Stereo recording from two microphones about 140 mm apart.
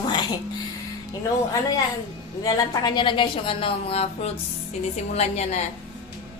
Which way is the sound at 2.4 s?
30° left (ahead or behind).